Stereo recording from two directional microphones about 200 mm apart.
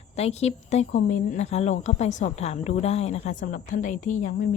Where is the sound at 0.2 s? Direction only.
30° left (ahead or behind).